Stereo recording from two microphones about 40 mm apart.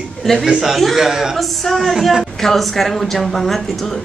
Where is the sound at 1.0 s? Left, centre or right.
Centre.